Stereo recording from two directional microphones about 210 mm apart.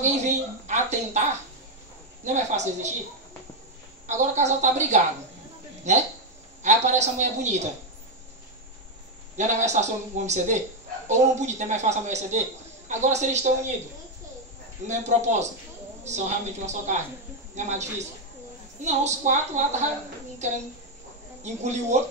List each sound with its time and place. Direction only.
0.0 s a man's voice: 35° right (ahead or behind)
2.2 s a man's voice: 35° right (ahead or behind)
4.1 s a man's voice: 35° right (ahead or behind)
9.4 s a man's voice: 35° right (ahead or behind)
14.9 s a man's voice: 35° right (ahead or behind)